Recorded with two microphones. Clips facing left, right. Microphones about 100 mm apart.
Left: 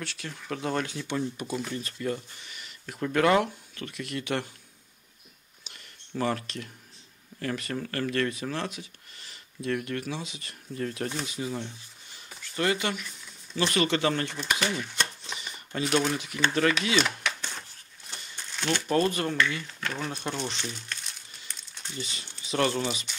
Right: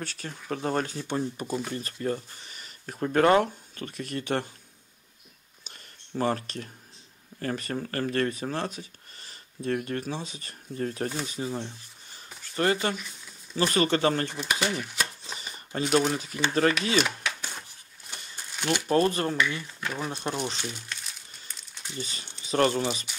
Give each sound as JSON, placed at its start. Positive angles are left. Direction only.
{"t": 0.0, "sound": "speech", "side_deg": -40}
{"t": 5.6, "sound": "a sound", "side_deg": -35}
{"t": 7.3, "sound": "speech", "side_deg": -35}
{"t": 14.7, "sound": "chopping", "side_deg": -5}
{"t": 15.3, "sound": "a sound", "side_deg": -35}
{"t": 15.8, "sound": "speech", "side_deg": -5}
{"t": 16.1, "sound": "speech", "side_deg": -40}
{"t": 17.0, "sound": "a sound", "side_deg": -10}
{"t": 18.9, "sound": "speech", "side_deg": -35}
{"t": 19.8, "sound": "speech", "side_deg": -10}
{"t": 20.6, "sound": "crumpling", "side_deg": -5}
{"t": 21.9, "sound": "speech", "side_deg": -40}